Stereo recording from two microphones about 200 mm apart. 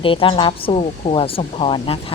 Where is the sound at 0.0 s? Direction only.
25° left (ahead or behind).